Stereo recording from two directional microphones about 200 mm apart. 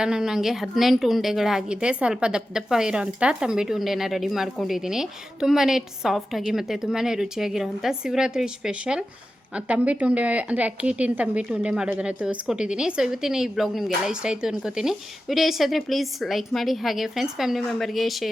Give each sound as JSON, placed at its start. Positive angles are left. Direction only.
{"t": 0.0, "sound": "a woman's voice", "side_deg": -5}